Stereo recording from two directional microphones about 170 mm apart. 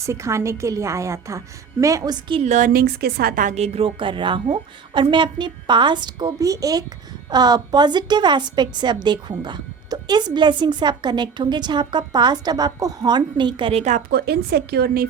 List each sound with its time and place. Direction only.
0.0 s a woman's voice: 15° right (ahead or behind)
2.4 s a woman's voice: 45° right (ahead or behind)
14.1 s a woman's voice: 65° right (ahead or behind)